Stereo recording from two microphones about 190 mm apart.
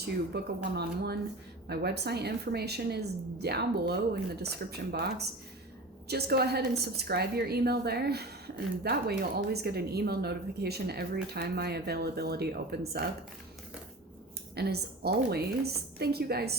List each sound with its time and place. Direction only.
0.0 s speech: 55° right (ahead or behind)
14.5 s speech: 55° right (ahead or behind)